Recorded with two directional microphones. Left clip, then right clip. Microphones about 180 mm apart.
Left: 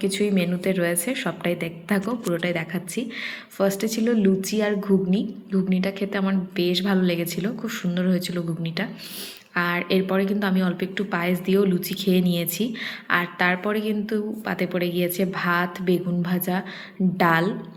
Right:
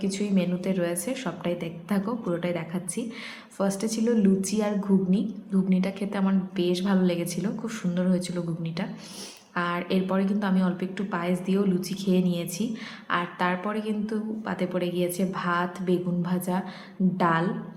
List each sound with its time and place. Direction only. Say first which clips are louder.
0.0 s a woman's voice: left 5 dB; 15° left (ahead or behind)